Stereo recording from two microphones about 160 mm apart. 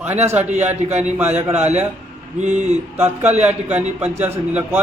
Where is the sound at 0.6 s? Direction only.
45° right (ahead or behind).